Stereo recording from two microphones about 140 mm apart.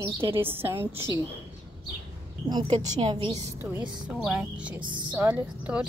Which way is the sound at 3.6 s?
15° right (ahead or behind).